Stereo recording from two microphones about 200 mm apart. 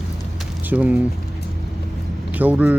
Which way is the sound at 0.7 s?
5° right (ahead or behind).